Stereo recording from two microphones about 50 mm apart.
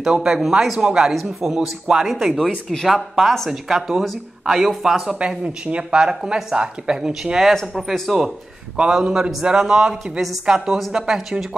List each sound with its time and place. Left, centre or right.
0.0 s a man's voice: centre
5.2 s speech: right
7.5 s speech: centre
8.9 s a man's voice: centre